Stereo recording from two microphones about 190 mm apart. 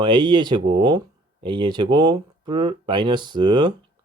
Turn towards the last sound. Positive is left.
turn(degrees=-25)  # may be behind; listen again after turning